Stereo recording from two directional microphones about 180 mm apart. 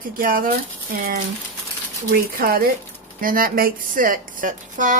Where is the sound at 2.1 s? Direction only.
55° right (ahead or behind).